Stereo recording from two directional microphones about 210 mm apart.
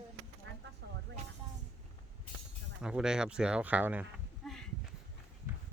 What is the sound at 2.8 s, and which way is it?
Speech, 5° right (ahead or behind).